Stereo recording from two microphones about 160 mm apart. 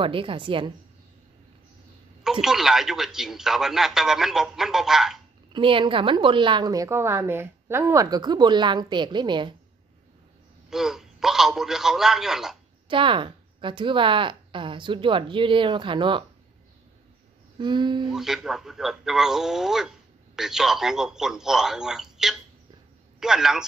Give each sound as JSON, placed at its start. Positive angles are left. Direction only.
{"t": 0.0, "sound": "a woman's voice", "side_deg": -35}
{"t": 2.4, "sound": "a man's voice", "side_deg": 0}
{"t": 5.5, "sound": "a woman's voice", "side_deg": -35}
{"t": 10.7, "sound": "a man's voice", "side_deg": -5}
{"t": 12.8, "sound": "a woman's voice", "side_deg": -30}
{"t": 17.6, "sound": "a woman's voice", "side_deg": -30}
{"t": 18.1, "sound": "a man's voice", "side_deg": -5}